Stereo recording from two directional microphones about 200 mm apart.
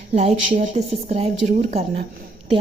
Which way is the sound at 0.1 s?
30° right (ahead or behind).